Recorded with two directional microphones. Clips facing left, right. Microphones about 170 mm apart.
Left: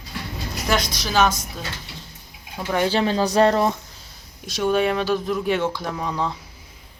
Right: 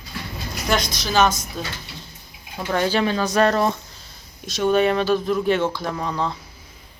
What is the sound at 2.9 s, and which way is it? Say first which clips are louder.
Speech: left 1 dB; 30° left (ahead or behind).